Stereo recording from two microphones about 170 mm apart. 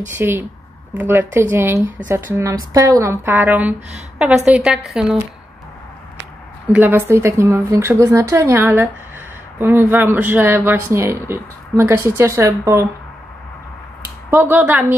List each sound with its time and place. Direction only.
0.1 s a woman's voice: 15° right (ahead or behind)
6.7 s speech: 10° right (ahead or behind)
14.3 s speech: 10° right (ahead or behind)